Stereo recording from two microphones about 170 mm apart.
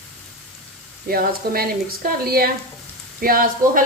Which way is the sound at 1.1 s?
60° right (ahead or behind).